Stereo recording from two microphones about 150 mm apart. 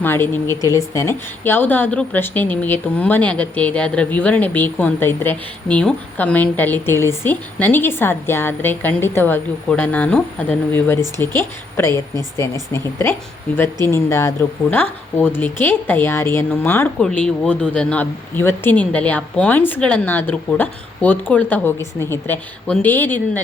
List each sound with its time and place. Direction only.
0.0 s a woman's voice: 15° left (ahead or behind)